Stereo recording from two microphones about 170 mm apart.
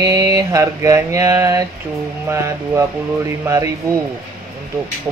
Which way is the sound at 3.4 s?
20° right (ahead or behind).